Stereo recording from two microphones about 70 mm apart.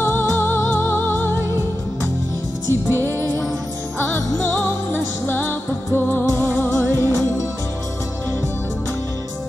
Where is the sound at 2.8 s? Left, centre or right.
Right.